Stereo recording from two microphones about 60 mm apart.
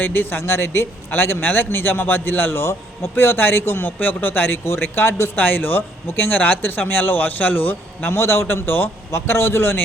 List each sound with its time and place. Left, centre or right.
0.0 s a man's voice: left
5.4 s a man's voice: left
8.1 s speech: left
9.1 s speech: left